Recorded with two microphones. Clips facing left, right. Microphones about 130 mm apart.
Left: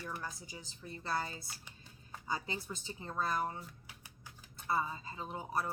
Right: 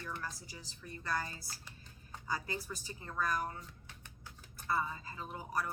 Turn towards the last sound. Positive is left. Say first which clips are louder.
# left 1 dB
turn(degrees=25)  # may be behind; listen again after turning